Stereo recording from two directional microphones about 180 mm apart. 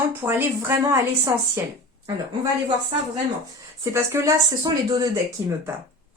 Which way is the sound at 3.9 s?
15° right (ahead or behind).